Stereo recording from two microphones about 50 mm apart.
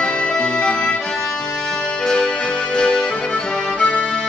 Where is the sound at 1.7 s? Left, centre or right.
Centre.